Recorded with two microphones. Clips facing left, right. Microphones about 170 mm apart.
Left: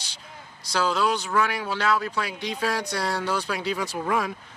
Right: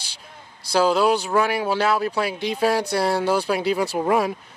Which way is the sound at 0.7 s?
10° right (ahead or behind).